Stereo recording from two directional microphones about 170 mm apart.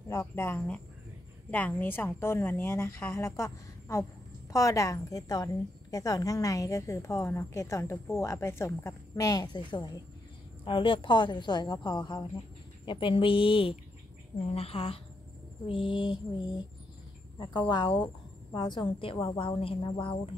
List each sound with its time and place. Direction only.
0.1 s a woman's voice: 15° left (ahead or behind)